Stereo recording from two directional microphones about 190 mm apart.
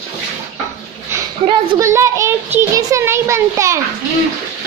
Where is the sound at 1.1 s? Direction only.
15° right (ahead or behind).